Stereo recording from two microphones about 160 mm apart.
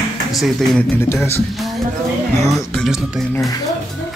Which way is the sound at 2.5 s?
Centre (ahead or behind).